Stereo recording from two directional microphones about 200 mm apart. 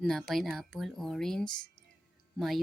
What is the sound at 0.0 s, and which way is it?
Speech, centre (ahead or behind).